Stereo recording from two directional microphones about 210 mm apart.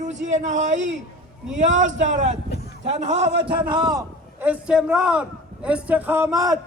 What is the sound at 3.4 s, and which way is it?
A man's voice, 20° right (ahead or behind).